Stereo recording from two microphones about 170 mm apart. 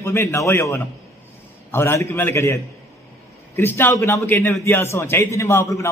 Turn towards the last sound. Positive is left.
turn(degrees=15)  # may be behind; listen again after turning